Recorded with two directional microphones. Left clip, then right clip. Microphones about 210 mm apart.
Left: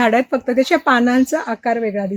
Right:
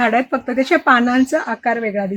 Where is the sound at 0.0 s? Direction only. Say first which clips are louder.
Left 1 dB; 50° left (ahead or behind).